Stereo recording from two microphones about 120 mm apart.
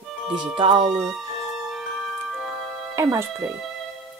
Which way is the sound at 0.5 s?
45° right (ahead or behind).